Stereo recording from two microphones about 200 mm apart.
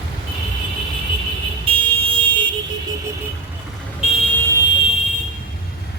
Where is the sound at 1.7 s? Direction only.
25° right (ahead or behind).